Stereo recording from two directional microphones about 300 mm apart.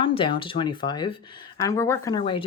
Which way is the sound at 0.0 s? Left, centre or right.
Centre.